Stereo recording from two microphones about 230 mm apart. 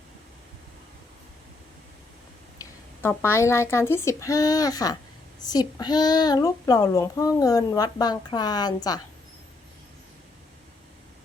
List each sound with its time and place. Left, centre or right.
3.0 s a child's voice: centre